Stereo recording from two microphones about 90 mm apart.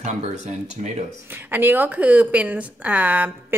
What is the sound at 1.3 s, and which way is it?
A woman's voice, 20° right (ahead or behind).